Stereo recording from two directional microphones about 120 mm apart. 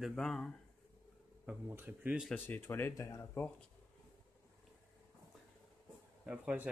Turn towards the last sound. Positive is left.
turn(degrees=-10)  # may be behind; listen again after turning